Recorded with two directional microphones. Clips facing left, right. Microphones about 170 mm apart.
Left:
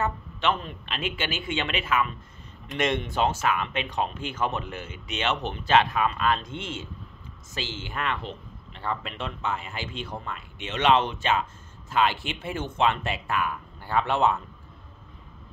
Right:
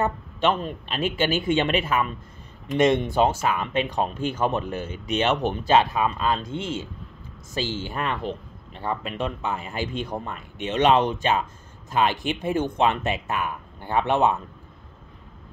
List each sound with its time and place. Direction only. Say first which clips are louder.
0.0 s speech: right 4 dB; 40° right (ahead or behind)
3.1 s speech: right 4 dB; 15° right (ahead or behind)
3.4 s speech: right 3 dB; 35° right (ahead or behind)
8.3 s a man's voice: right 7 dB; 15° right (ahead or behind)
9.6 s speech: right 6 dB; 40° right (ahead or behind)
10.0 s speech: right 5 dB; 20° right (ahead or behind)
10.3 s speech: right 7 dB; 40° right (ahead or behind)
11.9 s speech: right 2 dB; 15° right (ahead or behind)